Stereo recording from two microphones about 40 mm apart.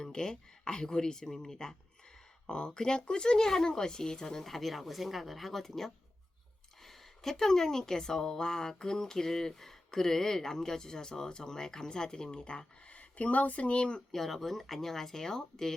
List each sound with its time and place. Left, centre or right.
0.0 s a woman's voice: centre
4.4 s a woman's voice: centre; by 14.0 s left
14.1 s a woman's voice: centre